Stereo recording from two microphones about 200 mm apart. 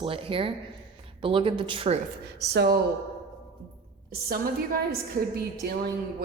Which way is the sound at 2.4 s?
55° right (ahead or behind).